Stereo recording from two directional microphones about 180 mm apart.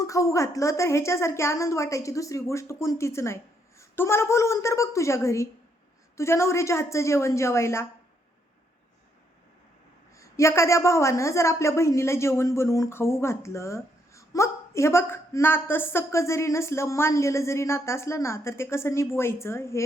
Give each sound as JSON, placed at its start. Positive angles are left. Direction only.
{"t": 0.0, "sound": "speech", "side_deg": 20}
{"t": 10.2, "sound": "speech", "side_deg": 15}